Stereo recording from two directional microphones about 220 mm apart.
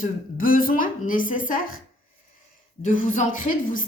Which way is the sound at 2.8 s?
35° left (ahead or behind).